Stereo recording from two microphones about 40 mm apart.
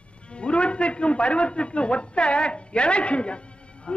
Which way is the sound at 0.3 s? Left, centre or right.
Left.